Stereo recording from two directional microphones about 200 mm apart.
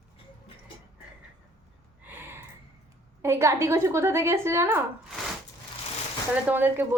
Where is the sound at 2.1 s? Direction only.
10° right (ahead or behind).